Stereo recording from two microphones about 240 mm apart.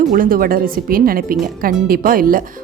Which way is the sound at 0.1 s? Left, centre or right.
Right.